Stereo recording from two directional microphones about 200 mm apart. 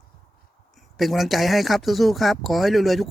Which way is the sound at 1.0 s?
Centre (ahead or behind).